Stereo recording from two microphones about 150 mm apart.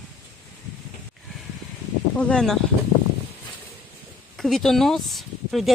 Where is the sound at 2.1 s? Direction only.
5° left (ahead or behind).